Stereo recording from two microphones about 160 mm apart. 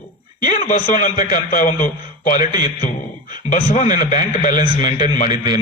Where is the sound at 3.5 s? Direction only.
50° left (ahead or behind).